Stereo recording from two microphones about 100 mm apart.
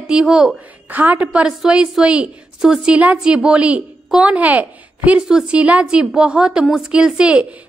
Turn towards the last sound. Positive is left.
turn(degrees=-10)  # may be behind; listen again after turning